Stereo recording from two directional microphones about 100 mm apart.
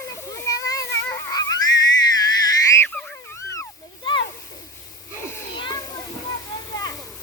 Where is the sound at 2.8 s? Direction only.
15° left (ahead or behind).